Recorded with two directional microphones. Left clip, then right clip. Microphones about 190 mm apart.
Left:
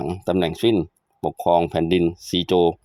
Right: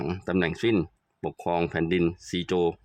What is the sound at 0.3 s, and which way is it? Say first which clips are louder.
Speech: left 6 dB; 20° left (ahead or behind).